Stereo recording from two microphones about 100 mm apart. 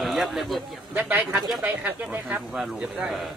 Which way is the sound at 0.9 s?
15° right (ahead or behind).